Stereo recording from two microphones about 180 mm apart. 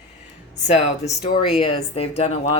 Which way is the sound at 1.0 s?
40° left (ahead or behind).